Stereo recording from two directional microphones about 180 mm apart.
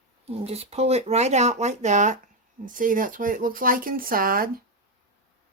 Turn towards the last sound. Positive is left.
turn(degrees=-55)  # may be behind; listen again after turning